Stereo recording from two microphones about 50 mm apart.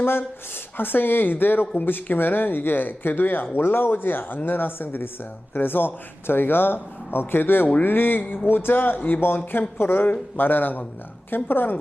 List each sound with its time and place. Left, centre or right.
0.0 s speech: left